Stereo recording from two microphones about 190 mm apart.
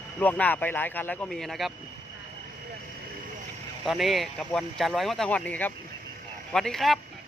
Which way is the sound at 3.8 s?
Centre (ahead or behind).